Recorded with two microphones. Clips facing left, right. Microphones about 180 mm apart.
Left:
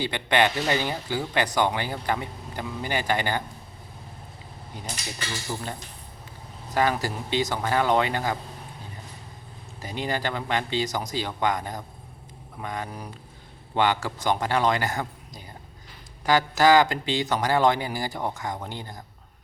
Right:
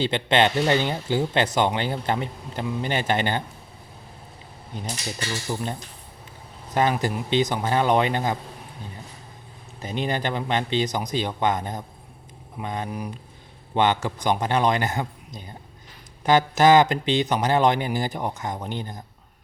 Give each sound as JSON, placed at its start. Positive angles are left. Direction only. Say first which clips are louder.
{"t": 0.0, "sound": "speech", "louder": "right 3 dB", "side_deg": -25}
{"t": 5.5, "sound": "speech", "louder": "right 4 dB", "side_deg": -15}
{"t": 6.7, "sound": "speech", "louder": "right 2 dB", "side_deg": -20}
{"t": 9.8, "sound": "speech", "louder": "right 2 dB", "side_deg": -20}